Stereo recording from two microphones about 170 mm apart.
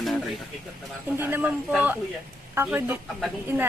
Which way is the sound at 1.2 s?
10° right (ahead or behind).